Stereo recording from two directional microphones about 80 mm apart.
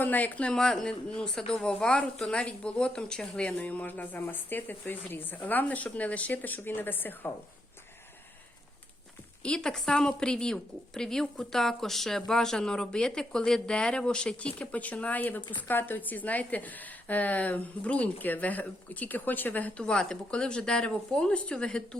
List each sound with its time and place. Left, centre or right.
0.0 s a woman's voice: left
9.4 s a woman's voice: centre